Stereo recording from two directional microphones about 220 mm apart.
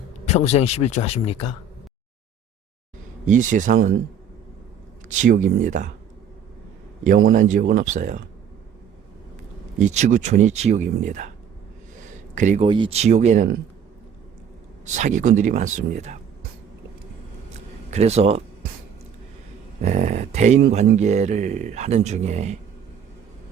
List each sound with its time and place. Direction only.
0.3 s speech: 30° left (ahead or behind)
3.2 s speech: 35° right (ahead or behind)
5.0 s speech: 35° right (ahead or behind)
7.3 s speech: 35° right (ahead or behind)
9.7 s speech: 35° right (ahead or behind)
12.3 s speech: 35° right (ahead or behind)
12.6 s speech: 20° right (ahead or behind)
14.9 s speech: 35° right (ahead or behind)
17.5 s a sound: 30° right (ahead or behind)
19.8 s speech: 35° right (ahead or behind)